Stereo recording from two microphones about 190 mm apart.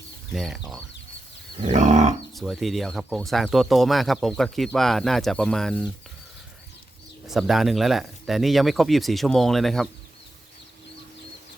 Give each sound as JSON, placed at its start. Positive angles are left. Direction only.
{"t": 0.3, "sound": "speech", "side_deg": 0}
{"t": 1.6, "sound": "livestock", "side_deg": -40}
{"t": 2.3, "sound": "speech", "side_deg": 0}
{"t": 7.3, "sound": "speech", "side_deg": 0}